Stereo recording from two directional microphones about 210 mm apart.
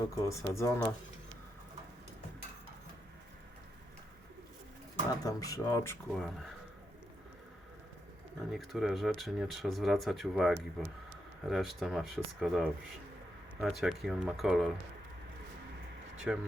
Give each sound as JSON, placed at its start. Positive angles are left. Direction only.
{"t": 0.3, "sound": "speech", "side_deg": 15}
{"t": 5.2, "sound": "speech", "side_deg": 15}
{"t": 6.1, "sound": "speech", "side_deg": 0}
{"t": 8.5, "sound": "speech", "side_deg": 0}
{"t": 16.3, "sound": "speech", "side_deg": -5}